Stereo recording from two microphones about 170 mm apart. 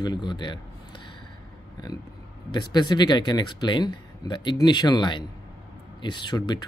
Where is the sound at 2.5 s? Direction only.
25° left (ahead or behind).